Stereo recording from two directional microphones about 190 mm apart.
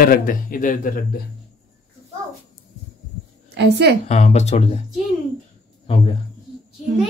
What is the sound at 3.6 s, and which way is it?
Speech, 60° right (ahead or behind).